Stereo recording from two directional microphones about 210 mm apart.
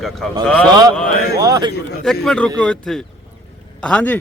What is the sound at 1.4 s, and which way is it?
Speech, 20° right (ahead or behind).